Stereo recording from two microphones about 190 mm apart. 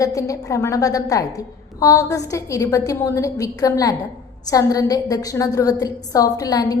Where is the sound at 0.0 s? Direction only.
15° left (ahead or behind).